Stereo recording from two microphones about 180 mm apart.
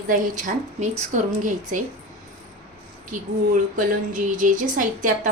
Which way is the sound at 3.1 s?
45° right (ahead or behind).